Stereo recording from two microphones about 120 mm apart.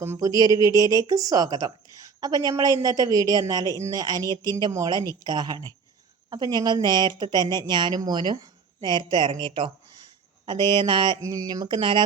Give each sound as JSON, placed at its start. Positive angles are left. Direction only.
{"t": 0.0, "sound": "speech", "side_deg": -25}
{"t": 11.2, "sound": "speech", "side_deg": -30}